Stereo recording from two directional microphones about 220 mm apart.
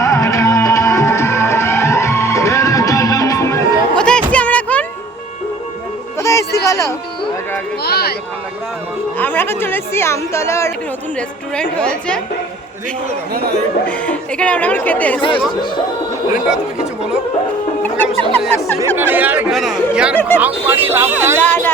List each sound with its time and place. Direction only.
0.0 s music: 15° left (ahead or behind)
6.1 s music: 15° left (ahead or behind)
7.8 s a sound: 45° left (ahead or behind)
9.1 s a woman's voice: 10° left (ahead or behind)
13.8 s speech: 5° left (ahead or behind)
17.8 s speech: 10° left (ahead or behind)
18.9 s speech: 10° right (ahead or behind)
20.1 s speech: 10° left (ahead or behind)
20.7 s speech: 10° right (ahead or behind)
21.4 s speech: 10° left (ahead or behind)